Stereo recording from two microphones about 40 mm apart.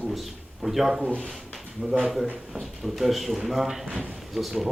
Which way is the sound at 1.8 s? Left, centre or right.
Right.